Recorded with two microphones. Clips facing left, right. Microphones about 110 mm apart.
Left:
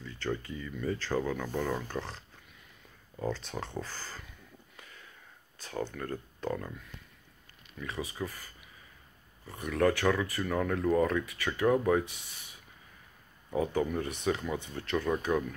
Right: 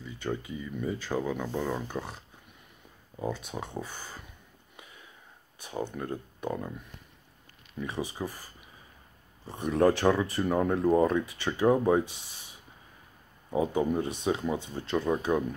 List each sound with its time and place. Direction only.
0.0 s speech: 15° right (ahead or behind)
4.7 s a sound: 15° right (ahead or behind)
5.6 s speech: 15° right (ahead or behind)
9.5 s speech: 25° right (ahead or behind)
13.5 s speech: 20° right (ahead or behind)